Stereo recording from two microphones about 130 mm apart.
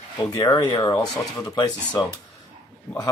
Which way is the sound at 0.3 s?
30° left (ahead or behind).